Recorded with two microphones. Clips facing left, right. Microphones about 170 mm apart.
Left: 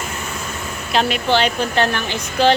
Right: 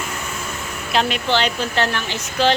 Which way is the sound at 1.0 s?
45° left (ahead or behind).